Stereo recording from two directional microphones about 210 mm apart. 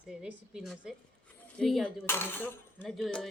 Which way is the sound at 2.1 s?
10° left (ahead or behind).